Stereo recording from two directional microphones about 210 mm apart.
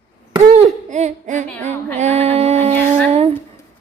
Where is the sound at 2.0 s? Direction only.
30° right (ahead or behind).